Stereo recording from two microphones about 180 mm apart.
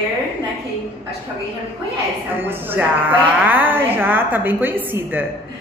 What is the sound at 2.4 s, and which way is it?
Speech, 10° right (ahead or behind).